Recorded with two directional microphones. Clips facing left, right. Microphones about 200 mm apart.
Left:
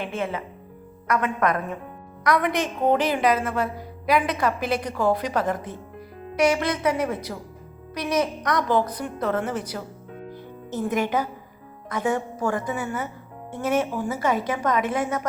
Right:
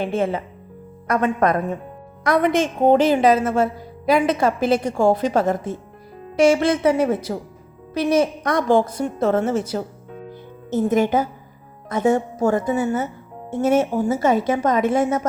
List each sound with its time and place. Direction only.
0.0 s a woman's voice: 30° right (ahead or behind)
11.0 s a woman's voice: 25° right (ahead or behind)